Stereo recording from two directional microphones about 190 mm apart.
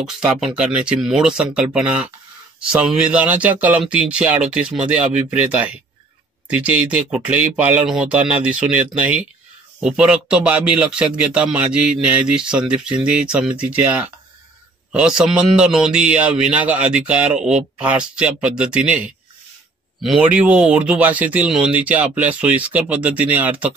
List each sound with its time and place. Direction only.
0.6 s speech: 5° right (ahead or behind)
9.8 s speech: 5° right (ahead or behind)
20.0 s speech: 5° right (ahead or behind)